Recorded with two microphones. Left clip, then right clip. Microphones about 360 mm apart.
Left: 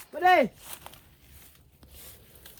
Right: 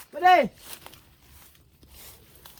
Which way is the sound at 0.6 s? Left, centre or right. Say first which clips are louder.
Right 1 dB; centre.